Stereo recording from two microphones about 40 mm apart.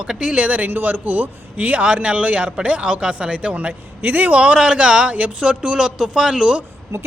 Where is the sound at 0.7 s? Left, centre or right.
Right.